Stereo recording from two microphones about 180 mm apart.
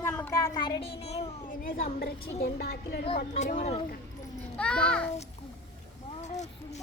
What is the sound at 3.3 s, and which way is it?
Speech, 45° left (ahead or behind).